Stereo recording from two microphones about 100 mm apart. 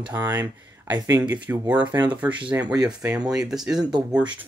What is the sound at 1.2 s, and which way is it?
Speech, 15° right (ahead or behind).